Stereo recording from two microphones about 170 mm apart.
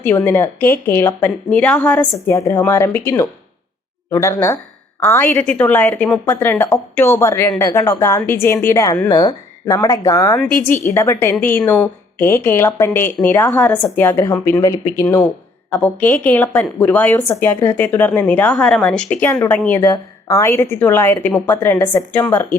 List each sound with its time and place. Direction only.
0.0 s a woman's voice: 10° left (ahead or behind)
2.1 s a woman's voice: 15° left (ahead or behind)
15.0 s a woman's voice: 10° left (ahead or behind)